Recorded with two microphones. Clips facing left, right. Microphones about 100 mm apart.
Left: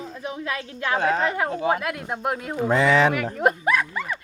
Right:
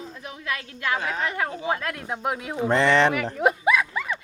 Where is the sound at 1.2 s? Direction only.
25° left (ahead or behind).